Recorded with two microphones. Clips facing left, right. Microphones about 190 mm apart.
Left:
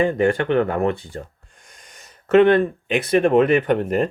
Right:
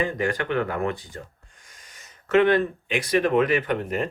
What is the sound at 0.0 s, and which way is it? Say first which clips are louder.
Speech: left 7 dB; 30° left (ahead or behind).